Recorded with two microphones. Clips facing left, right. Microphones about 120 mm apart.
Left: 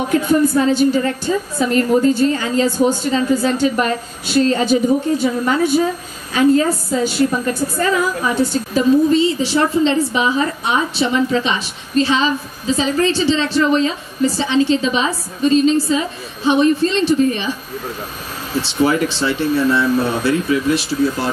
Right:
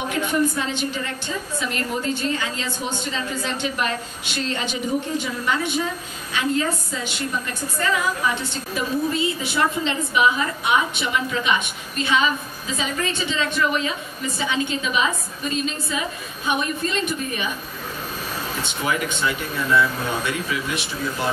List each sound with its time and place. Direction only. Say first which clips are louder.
0.3 s a woman's voice: left 9 dB; 40° left (ahead or behind)
18.6 s a woman's voice: left 10 dB; 30° left (ahead or behind)